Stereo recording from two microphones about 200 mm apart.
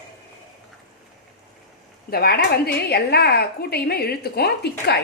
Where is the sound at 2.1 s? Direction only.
50° left (ahead or behind).